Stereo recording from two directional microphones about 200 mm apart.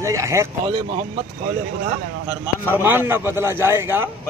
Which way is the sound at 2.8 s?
10° right (ahead or behind).